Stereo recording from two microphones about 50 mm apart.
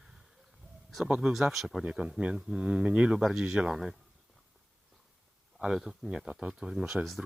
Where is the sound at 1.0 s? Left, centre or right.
Centre.